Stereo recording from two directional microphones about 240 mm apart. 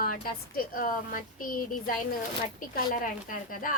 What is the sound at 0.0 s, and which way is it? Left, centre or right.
A woman's voice, left.